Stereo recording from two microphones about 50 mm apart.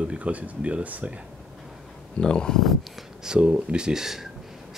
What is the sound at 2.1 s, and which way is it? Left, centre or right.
Speech, centre.